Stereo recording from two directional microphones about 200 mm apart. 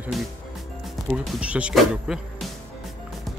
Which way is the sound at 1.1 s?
5° right (ahead or behind).